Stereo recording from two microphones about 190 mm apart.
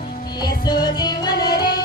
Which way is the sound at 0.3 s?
20° left (ahead or behind).